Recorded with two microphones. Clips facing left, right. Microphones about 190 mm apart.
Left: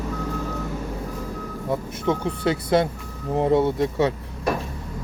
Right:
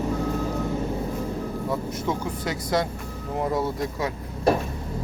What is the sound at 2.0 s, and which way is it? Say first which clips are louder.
Speech: left 5 dB; 25° left (ahead or behind).